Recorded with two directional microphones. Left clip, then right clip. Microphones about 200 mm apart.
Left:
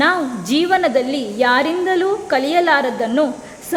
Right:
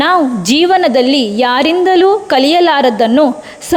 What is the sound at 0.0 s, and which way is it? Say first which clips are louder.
A woman's voice: right 6 dB; 40° right (ahead or behind).